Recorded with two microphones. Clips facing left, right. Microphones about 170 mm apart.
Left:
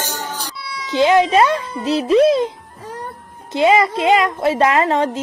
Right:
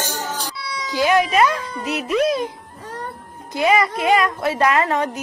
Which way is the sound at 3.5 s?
25° left (ahead or behind).